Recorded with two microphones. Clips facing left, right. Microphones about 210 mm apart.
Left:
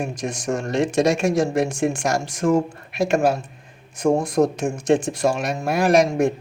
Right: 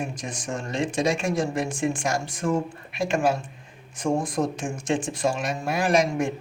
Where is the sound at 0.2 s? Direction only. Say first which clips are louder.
Left 7 dB; 70° left (ahead or behind).